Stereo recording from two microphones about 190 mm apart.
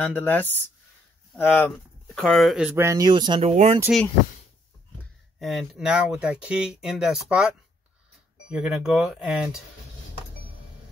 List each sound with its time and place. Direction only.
0.0 s speech: 10° left (ahead or behind); by 3.7 s 35° right (ahead or behind)
5.4 s speech: centre (ahead or behind)